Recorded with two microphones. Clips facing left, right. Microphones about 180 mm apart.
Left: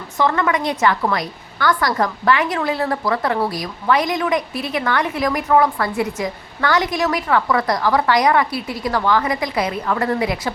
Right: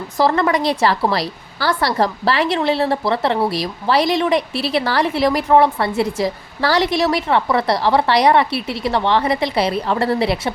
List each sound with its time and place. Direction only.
0.2 s a woman's voice: 35° right (ahead or behind)
8.5 s speech: 70° right (ahead or behind)
8.8 s a woman's voice: 25° right (ahead or behind)